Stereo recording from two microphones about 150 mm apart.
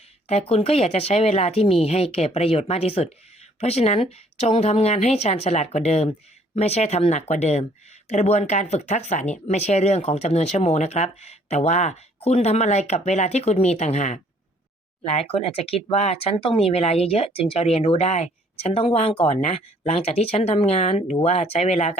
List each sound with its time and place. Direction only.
0.3 s speech: 45° left (ahead or behind)